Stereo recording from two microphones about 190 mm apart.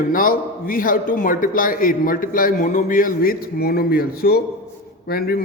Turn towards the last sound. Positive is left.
turn(degrees=50)  # may be behind; listen again after turning